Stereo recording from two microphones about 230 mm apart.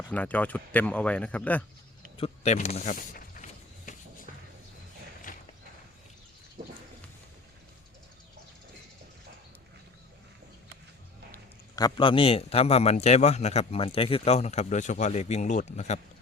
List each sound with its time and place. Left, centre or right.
0.1 s speech: centre
2.1 s a sound: left
5.3 s horse: left
11.8 s a man's voice: left